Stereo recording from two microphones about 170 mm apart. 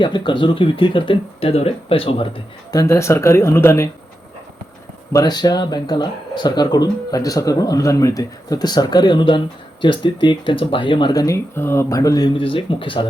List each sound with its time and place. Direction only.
0.0 s speech: 25° left (ahead or behind)
2.8 s speech: 15° left (ahead or behind)
5.1 s speech: 25° left (ahead or behind)